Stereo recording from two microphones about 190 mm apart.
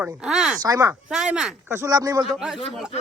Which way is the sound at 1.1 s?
5° right (ahead or behind).